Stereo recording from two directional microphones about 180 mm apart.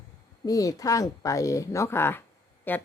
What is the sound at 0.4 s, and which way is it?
A woman's voice, 20° left (ahead or behind).